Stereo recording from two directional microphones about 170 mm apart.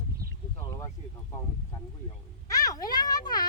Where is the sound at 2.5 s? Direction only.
20° left (ahead or behind).